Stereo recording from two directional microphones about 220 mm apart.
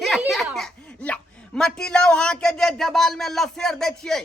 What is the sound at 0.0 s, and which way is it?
Speech, centre (ahead or behind).